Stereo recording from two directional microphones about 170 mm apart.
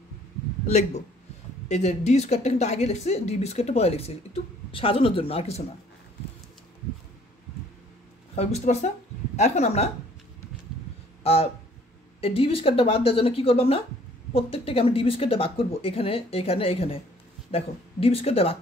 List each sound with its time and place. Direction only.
0.7 s a man's voice: 45° left (ahead or behind)
8.4 s speech: 40° left (ahead or behind)
12.2 s speech: 35° left (ahead or behind)